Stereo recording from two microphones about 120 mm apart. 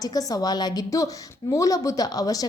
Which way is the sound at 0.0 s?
30° left (ahead or behind).